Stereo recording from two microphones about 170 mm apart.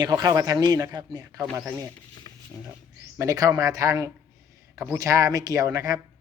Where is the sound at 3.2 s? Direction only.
20° right (ahead or behind).